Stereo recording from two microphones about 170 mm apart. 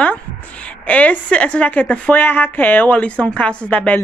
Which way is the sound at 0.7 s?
10° left (ahead or behind).